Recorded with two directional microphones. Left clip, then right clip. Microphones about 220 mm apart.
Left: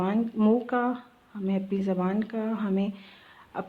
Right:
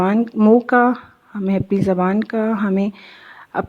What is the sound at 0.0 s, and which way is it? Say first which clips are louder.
Speech: right 10 dB; 30° right (ahead or behind).